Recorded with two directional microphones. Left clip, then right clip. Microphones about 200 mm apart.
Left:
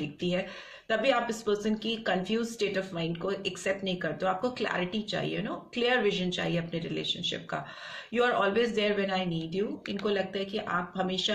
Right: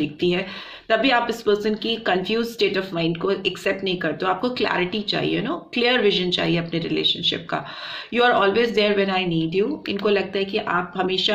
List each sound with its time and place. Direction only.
0.2 s speech: 35° right (ahead or behind)